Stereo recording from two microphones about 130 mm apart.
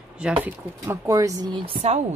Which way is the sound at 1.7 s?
55° right (ahead or behind).